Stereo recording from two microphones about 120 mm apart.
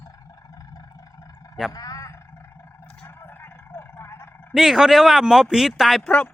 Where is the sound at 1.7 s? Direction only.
30° left (ahead or behind).